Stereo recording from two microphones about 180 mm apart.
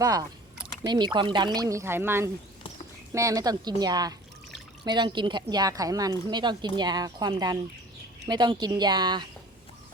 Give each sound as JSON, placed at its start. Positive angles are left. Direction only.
{"t": 0.0, "sound": "speech", "side_deg": -20}